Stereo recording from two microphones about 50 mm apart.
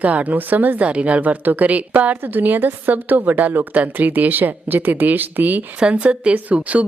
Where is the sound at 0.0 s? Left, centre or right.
Right.